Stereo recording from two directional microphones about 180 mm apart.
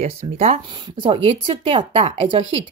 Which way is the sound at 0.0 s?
35° right (ahead or behind).